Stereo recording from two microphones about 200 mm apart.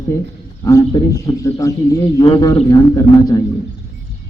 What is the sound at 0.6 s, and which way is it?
A man's voice, 15° left (ahead or behind).